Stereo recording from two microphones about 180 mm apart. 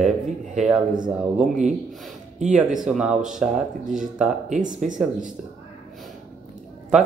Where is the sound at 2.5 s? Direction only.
5° right (ahead or behind).